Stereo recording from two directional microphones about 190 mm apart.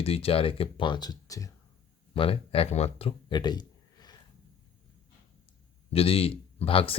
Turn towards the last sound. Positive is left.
turn(degrees=30)  # may be behind; listen again after turning